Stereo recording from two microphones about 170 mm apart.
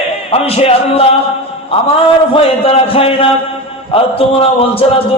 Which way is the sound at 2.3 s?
35° left (ahead or behind).